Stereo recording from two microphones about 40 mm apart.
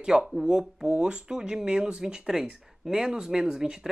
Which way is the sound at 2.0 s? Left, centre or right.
Centre.